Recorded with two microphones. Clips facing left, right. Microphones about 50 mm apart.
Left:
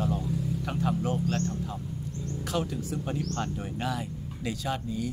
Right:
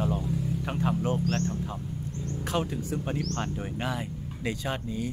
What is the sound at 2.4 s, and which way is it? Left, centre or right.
Speech, right.